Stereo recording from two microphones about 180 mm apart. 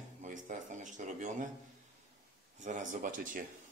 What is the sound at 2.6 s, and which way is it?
Speech, 45° right (ahead or behind).